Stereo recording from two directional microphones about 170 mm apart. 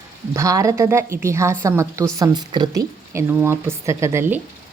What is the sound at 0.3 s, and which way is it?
A woman's voice, 20° right (ahead or behind).